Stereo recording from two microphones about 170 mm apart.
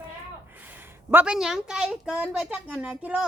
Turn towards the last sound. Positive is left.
turn(degrees=-10)  # may be behind; listen again after turning